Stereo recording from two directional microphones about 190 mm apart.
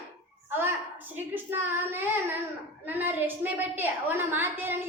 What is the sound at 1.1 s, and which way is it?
A woman's voice, 10° right (ahead or behind).